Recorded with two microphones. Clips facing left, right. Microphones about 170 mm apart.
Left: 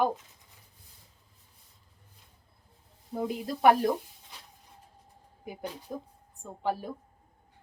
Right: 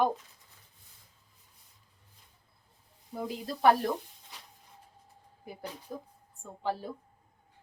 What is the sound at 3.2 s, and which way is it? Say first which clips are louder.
Speech: left 3 dB; 20° left (ahead or behind).